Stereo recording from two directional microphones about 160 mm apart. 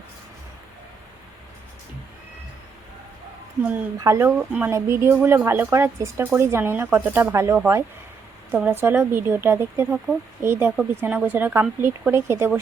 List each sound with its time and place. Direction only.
3.7 s a woman's voice: 15° right (ahead or behind)